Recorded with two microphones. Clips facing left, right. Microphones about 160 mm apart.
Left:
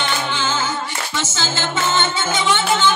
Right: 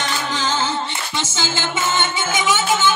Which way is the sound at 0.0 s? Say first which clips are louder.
Left 1 dB; 35° right (ahead or behind).